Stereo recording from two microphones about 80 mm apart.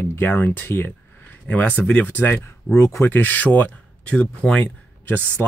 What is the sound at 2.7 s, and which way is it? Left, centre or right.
Speech, left.